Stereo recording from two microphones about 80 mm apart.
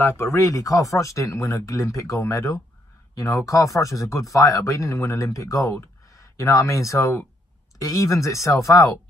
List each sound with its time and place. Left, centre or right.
0.0 s speech: left